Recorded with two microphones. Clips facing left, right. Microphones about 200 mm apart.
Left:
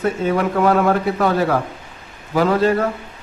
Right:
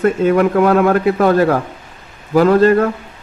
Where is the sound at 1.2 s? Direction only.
50° right (ahead or behind).